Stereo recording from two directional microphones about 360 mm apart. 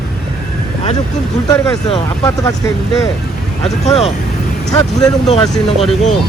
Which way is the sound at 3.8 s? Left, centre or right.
Centre.